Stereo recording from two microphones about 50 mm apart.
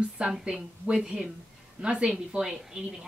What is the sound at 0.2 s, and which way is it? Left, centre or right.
A woman's voice, centre.